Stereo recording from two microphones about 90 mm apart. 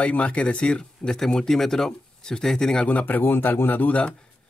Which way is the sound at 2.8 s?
20° left (ahead or behind).